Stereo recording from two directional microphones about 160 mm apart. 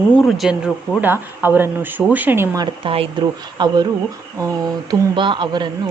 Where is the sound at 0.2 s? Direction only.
Centre (ahead or behind); by 2.6 s 15° right (ahead or behind).